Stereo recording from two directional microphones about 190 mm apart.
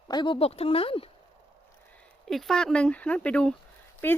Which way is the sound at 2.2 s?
Centre (ahead or behind).